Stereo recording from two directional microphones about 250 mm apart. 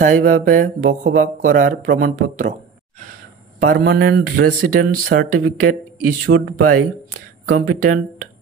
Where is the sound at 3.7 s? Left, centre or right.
Right.